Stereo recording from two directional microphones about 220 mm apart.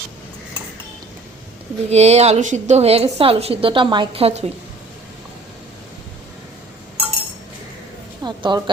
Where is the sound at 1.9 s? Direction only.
30° right (ahead or behind).